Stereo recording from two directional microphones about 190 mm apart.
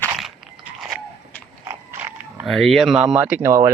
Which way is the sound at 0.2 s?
Centre (ahead or behind).